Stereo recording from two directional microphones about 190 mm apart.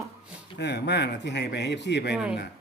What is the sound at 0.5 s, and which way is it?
Speech, 60° left (ahead or behind).